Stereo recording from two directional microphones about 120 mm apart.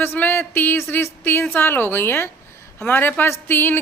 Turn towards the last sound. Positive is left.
turn(degrees=20)  # may be behind; listen again after turning